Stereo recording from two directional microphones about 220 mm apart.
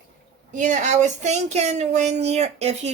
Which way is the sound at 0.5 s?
35° right (ahead or behind).